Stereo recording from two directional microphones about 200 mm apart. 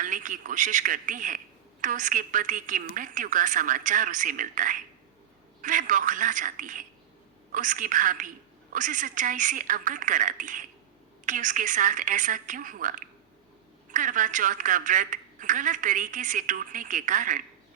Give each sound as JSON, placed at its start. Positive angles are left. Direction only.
{"t": 0.0, "sound": "a woman's voice", "side_deg": -40}